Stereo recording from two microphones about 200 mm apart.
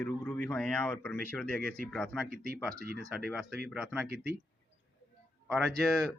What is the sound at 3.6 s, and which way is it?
Speech, centre (ahead or behind).